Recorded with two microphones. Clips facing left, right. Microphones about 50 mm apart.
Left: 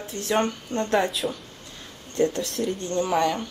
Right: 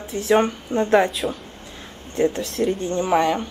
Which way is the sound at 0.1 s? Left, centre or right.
Centre.